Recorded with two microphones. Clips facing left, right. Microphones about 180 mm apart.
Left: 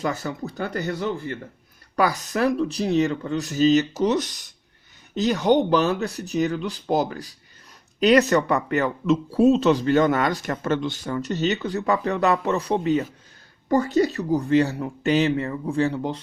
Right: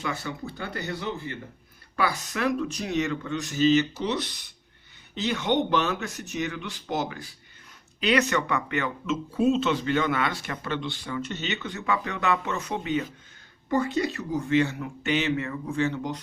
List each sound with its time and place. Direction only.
0.0 s speech: 40° left (ahead or behind)